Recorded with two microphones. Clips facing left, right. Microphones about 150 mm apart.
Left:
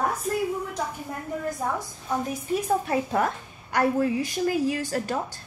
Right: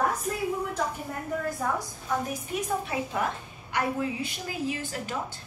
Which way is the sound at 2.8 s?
45° left (ahead or behind).